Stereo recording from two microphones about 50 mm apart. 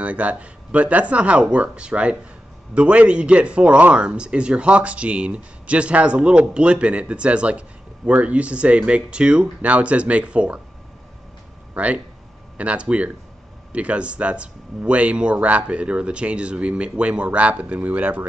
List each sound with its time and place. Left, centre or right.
0.0 s a man's voice: right
11.7 s a man's voice: right